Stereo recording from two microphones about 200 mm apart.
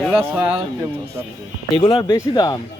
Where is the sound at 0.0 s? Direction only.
Centre (ahead or behind).